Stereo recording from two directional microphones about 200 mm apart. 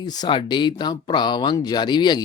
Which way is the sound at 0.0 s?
20° left (ahead or behind).